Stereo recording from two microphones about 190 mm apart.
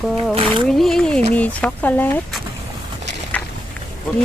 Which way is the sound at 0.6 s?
Centre (ahead or behind).